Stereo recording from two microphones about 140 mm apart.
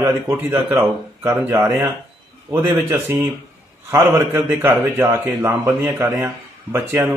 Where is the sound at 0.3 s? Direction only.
15° right (ahead or behind).